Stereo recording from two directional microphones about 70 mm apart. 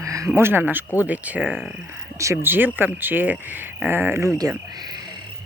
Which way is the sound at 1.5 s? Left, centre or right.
Centre.